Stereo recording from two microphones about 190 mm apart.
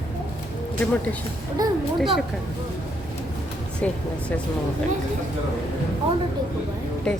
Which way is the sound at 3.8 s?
5° left (ahead or behind).